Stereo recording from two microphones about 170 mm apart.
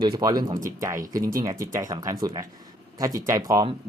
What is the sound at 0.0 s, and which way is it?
Speech, 20° right (ahead or behind).